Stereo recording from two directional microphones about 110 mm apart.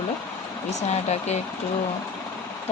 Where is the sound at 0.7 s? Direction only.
90° left.